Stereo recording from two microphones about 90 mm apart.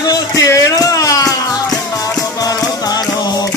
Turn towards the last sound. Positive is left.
turn(degrees=45)  # may be behind; listen again after turning